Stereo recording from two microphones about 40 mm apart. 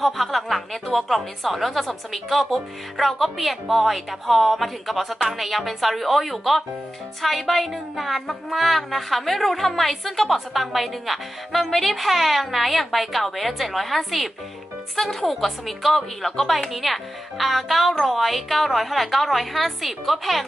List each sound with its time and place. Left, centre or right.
0.0 s music: centre